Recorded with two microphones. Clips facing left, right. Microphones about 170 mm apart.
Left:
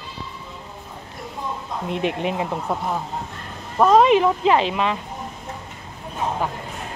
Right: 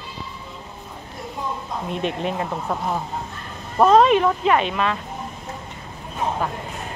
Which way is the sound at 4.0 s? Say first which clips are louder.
Left 1 dB; 20° left (ahead or behind).